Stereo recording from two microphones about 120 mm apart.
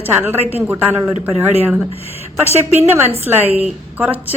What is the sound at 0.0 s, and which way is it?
A woman's voice, 15° right (ahead or behind).